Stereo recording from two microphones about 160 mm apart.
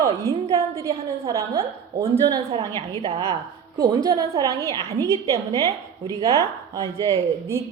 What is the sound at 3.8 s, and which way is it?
Speech, 25° right (ahead or behind).